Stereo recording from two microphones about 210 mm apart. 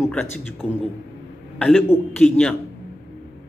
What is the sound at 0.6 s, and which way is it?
Speech, 30° left (ahead or behind).